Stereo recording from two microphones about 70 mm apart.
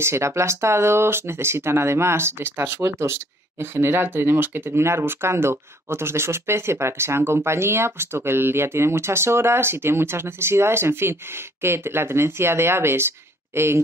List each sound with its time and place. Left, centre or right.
0.0 s speech: right